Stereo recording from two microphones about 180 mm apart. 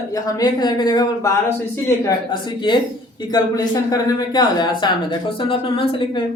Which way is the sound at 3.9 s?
20° left (ahead or behind).